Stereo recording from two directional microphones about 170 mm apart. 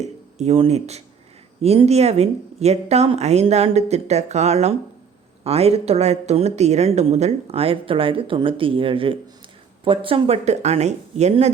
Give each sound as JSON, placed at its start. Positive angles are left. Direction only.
{"t": 0.0, "sound": "a woman's voice", "side_deg": -40}